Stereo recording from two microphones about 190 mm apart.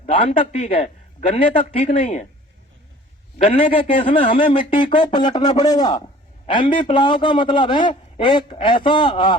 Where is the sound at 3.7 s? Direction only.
30° left (ahead or behind).